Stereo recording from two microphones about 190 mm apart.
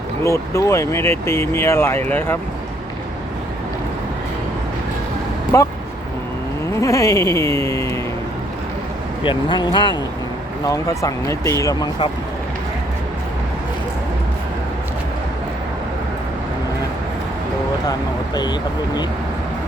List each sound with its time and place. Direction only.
0.3 s speech: 15° left (ahead or behind)
6.7 s speech: 15° left (ahead or behind)
9.2 s speech: 25° left (ahead or behind)